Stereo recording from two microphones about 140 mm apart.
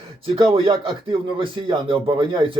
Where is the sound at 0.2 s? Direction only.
40° right (ahead or behind).